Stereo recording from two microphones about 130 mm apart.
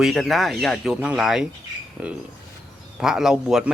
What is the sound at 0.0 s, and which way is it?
A man's voice, centre (ahead or behind).